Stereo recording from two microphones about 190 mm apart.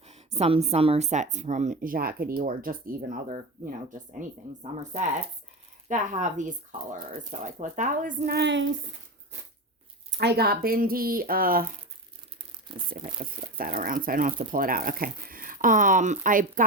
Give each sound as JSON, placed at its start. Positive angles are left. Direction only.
{"t": 0.0, "sound": "speech", "side_deg": -35}
{"t": 4.9, "sound": "speech", "side_deg": -35}
{"t": 8.4, "sound": "speech", "side_deg": -70}
{"t": 10.1, "sound": "speech", "side_deg": -60}
{"t": 13.0, "sound": "speech", "side_deg": -30}
{"t": 13.2, "sound": "speech", "side_deg": -50}